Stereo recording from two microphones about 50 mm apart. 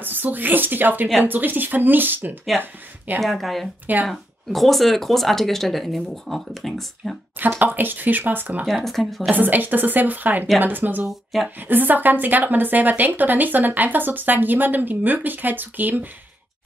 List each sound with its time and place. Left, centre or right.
0.0 s speech: right
3.2 s speech: centre
7.3 s speech: right
8.6 s speech: centre
9.3 s speech: right